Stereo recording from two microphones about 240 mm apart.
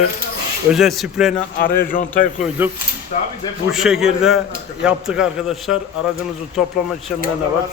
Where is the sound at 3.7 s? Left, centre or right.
Centre.